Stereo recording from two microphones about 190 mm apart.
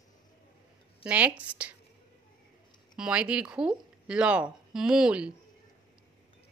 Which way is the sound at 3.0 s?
5° right (ahead or behind).